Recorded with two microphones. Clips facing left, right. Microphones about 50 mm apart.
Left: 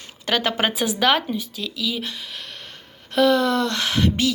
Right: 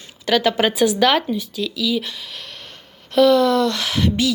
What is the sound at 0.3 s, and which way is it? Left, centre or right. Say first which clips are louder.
Speech: right 4 dB; left.